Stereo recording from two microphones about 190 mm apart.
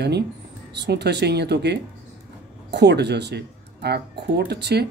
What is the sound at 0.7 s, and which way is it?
Speech, 60° right (ahead or behind).